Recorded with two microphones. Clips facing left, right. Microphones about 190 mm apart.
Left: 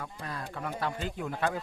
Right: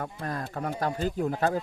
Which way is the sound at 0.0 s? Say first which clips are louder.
Right 6 dB; 50° right (ahead or behind).